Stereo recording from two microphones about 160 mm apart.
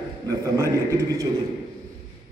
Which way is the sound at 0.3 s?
20° right (ahead or behind).